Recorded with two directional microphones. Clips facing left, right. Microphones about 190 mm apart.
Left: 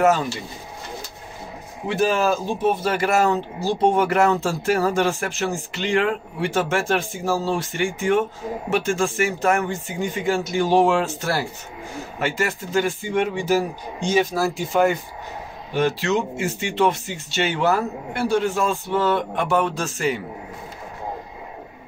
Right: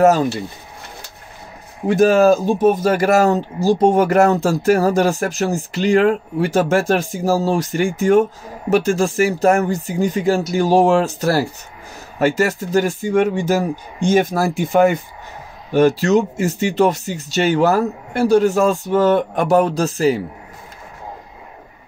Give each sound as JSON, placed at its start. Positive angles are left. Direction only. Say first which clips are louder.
{"t": 0.0, "sound": "speech", "louder": "right 5 dB", "side_deg": -40}
{"t": 1.9, "sound": "speech", "louder": "right 8 dB", "side_deg": -45}
{"t": 15.7, "sound": "speech", "louder": "right 7 dB", "side_deg": -40}